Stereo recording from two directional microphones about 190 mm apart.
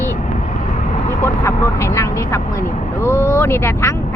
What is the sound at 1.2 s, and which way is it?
Speech, 15° left (ahead or behind).